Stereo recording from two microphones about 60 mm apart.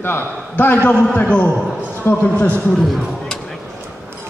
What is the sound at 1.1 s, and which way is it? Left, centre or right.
Speech, left.